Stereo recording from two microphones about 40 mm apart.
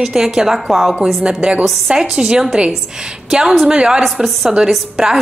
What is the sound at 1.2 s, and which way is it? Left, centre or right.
A woman's voice, right.